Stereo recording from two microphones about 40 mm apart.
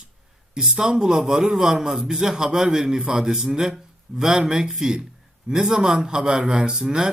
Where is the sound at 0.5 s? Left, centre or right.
Centre.